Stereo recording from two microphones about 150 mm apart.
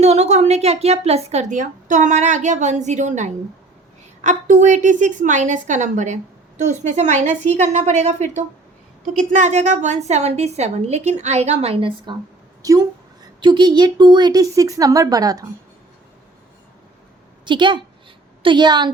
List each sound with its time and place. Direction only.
0.0 s a woman's voice: 50° right (ahead or behind)
12.6 s speech: 25° right (ahead or behind)
17.4 s a woman's voice: 30° right (ahead or behind)